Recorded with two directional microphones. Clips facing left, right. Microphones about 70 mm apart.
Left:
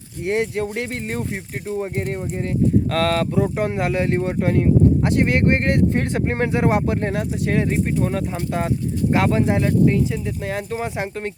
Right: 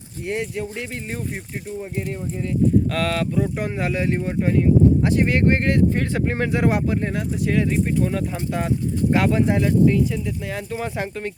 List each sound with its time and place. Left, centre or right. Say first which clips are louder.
0.3 s speech: left 5 dB; left
6.8 s speech: left 1 dB; left
10.8 s speech: left 1 dB; centre